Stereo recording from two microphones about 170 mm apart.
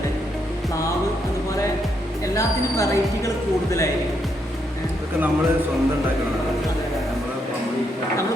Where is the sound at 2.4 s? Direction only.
20° left (ahead or behind).